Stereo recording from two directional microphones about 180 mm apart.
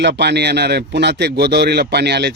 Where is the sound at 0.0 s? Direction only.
70° right (ahead or behind).